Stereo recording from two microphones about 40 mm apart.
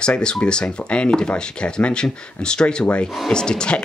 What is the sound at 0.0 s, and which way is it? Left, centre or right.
Speech, left.